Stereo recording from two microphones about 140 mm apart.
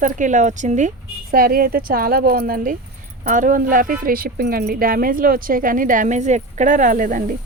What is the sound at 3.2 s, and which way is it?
Speech, 70° right (ahead or behind).